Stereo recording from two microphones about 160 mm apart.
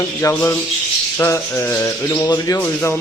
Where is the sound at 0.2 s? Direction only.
15° left (ahead or behind).